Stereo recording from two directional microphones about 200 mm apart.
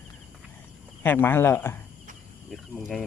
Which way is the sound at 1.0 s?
10° left (ahead or behind).